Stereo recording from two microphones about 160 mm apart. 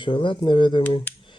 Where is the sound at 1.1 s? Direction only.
10° left (ahead or behind).